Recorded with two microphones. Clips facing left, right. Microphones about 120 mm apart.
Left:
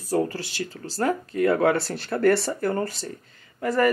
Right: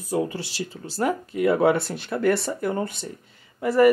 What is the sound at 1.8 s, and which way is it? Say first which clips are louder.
Speech: left 1 dB; centre (ahead or behind).